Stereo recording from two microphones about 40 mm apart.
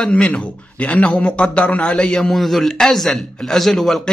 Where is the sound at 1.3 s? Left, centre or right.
Left.